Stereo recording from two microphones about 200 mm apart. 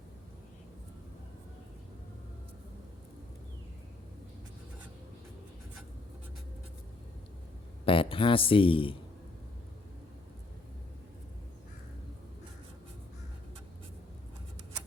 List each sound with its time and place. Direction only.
7.9 s speech: 25° left (ahead or behind)